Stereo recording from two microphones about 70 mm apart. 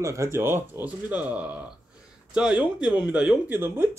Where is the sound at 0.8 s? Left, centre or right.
Centre.